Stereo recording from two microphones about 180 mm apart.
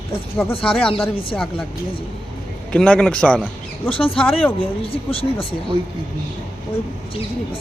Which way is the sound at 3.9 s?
30° left (ahead or behind).